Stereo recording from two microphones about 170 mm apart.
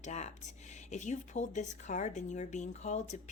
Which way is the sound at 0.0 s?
45° left (ahead or behind).